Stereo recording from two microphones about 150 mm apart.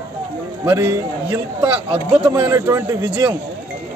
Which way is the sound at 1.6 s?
30° right (ahead or behind).